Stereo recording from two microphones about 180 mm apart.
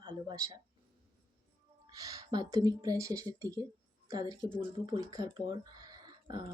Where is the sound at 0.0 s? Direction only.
20° right (ahead or behind).